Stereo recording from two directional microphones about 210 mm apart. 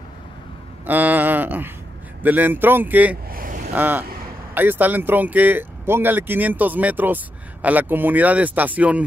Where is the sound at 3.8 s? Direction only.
10° right (ahead or behind).